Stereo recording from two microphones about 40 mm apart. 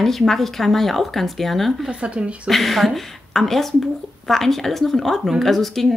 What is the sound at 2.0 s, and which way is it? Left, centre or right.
Speech, right.